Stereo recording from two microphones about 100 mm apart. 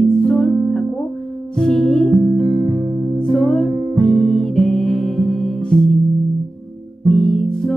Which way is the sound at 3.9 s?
50° right (ahead or behind).